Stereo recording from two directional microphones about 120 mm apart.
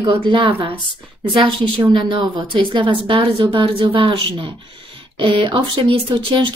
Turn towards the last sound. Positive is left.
turn(degrees=-45)  # may be behind; listen again after turning